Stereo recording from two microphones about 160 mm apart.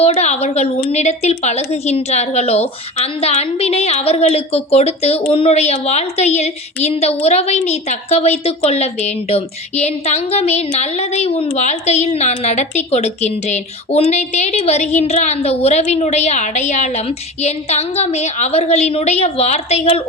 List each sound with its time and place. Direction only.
0.0 s a woman's voice: 40° left (ahead or behind)